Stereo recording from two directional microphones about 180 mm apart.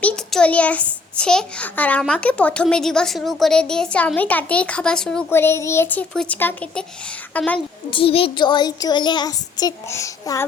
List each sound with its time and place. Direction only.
0.0 s a child's voice: 5° left (ahead or behind)
7.9 s a child's voice: 30° left (ahead or behind)